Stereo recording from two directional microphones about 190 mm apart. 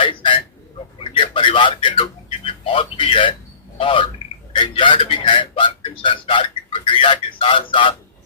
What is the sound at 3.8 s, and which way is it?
A man's voice, 30° left (ahead or behind).